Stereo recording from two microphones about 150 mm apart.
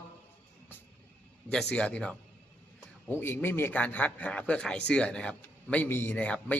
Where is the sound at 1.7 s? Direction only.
5° left (ahead or behind).